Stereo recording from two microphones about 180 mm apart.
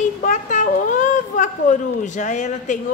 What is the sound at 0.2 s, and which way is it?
A child's voice, 45° left (ahead or behind).